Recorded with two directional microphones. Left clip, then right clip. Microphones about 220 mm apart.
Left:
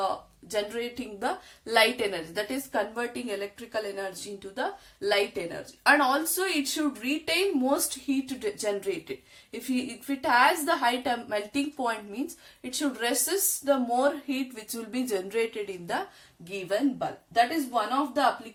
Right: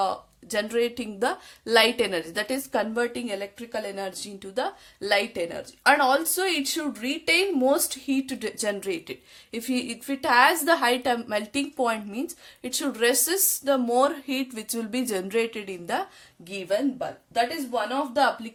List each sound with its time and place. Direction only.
0.5 s a woman's voice: 50° right (ahead or behind)
17.7 s a woman's voice: 50° right (ahead or behind)